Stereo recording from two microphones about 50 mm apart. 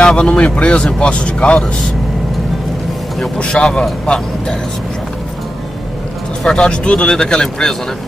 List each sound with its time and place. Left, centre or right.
0.0 s speech: centre
3.3 s speech: centre
6.4 s speech: centre